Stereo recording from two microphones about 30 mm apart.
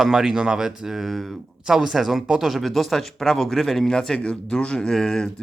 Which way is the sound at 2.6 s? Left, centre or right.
Centre.